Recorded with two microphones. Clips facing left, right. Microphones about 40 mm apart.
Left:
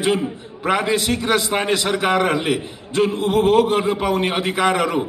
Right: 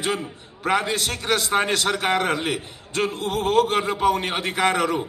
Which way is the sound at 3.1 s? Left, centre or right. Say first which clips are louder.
Left 5 dB; left.